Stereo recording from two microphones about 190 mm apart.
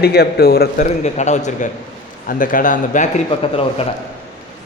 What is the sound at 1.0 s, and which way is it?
A man's voice, 40° left (ahead or behind).